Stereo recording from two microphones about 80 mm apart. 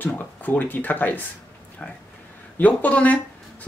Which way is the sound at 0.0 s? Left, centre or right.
Left.